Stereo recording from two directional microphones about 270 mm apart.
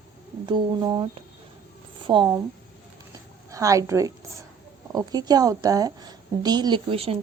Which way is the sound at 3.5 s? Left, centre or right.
Centre.